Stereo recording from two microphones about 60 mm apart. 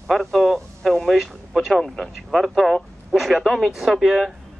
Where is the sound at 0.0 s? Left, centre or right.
Centre.